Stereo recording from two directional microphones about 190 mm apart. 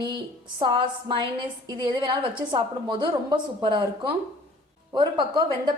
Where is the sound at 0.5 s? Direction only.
25° right (ahead or behind).